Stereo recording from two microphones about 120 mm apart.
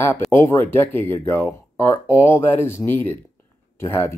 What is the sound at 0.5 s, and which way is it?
Speech, 20° left (ahead or behind).